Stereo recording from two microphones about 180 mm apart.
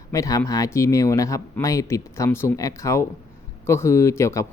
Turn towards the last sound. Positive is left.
turn(degrees=15)  # may be behind; listen again after turning